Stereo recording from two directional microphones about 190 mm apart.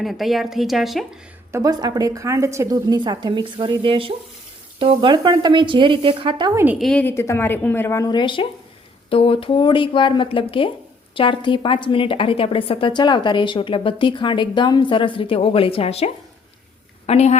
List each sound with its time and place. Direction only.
0.0 s speech: centre (ahead or behind)
1.5 s a woman's voice: 20° right (ahead or behind)
6.7 s a woman's voice: 5° left (ahead or behind); by 17.3 s 35° left (ahead or behind)